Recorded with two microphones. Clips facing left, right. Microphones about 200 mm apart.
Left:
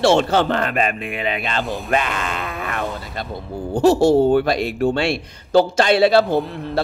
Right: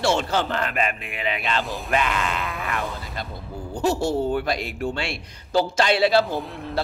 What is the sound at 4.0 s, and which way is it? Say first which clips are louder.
Speech: left 9 dB; 70° left (ahead or behind).